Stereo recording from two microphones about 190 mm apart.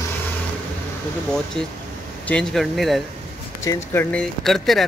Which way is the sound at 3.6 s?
15° left (ahead or behind).